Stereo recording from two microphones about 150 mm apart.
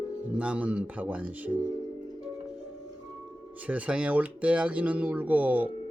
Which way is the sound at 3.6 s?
10° right (ahead or behind).